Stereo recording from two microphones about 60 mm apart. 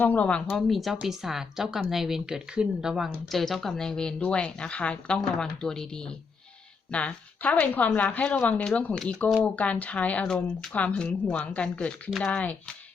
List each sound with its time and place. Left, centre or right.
0.0 s speech: left
0.5 s speech: centre
2.9 s speech: centre
5.1 s speech: centre
6.9 s speech: left
10.2 s speech: centre
10.7 s speech: left